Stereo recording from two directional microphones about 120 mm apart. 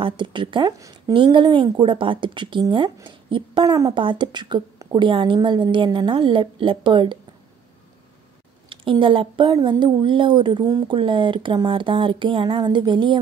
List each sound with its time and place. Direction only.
0.0 s speech: 40° right (ahead or behind)
0.7 s a woman's voice: 30° right (ahead or behind)
1.1 s speech: 45° right (ahead or behind)
3.9 s speech: 40° right (ahead or behind)
8.6 s a woman's voice: 45° right (ahead or behind)